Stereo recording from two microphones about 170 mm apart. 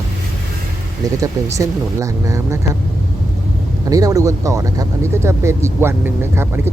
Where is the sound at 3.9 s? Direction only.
20° right (ahead or behind).